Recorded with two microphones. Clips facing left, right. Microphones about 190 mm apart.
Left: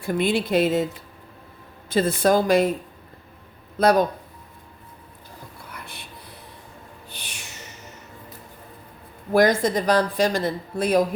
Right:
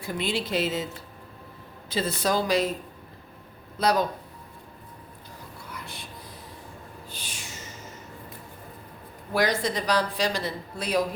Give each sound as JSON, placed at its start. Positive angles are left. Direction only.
{"t": 0.0, "sound": "speech", "side_deg": 55}
{"t": 1.9, "sound": "a woman's voice", "side_deg": 50}
{"t": 3.8, "sound": "a woman's voice", "side_deg": 55}
{"t": 5.7, "sound": "whispering", "side_deg": 60}
{"t": 7.1, "sound": "music", "side_deg": 65}
{"t": 9.3, "sound": "a woman's voice", "side_deg": 50}